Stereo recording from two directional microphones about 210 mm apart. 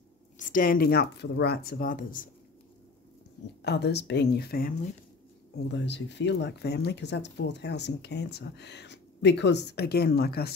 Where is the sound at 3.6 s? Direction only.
50° left (ahead or behind).